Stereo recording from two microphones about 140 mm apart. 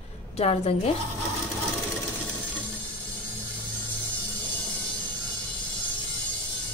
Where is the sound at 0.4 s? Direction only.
45° left (ahead or behind).